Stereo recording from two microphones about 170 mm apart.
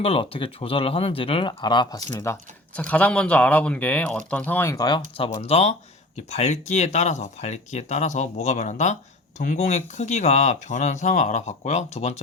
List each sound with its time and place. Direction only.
0.0 s speech: 35° left (ahead or behind)